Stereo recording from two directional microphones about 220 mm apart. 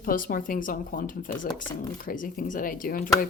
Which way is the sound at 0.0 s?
40° left (ahead or behind).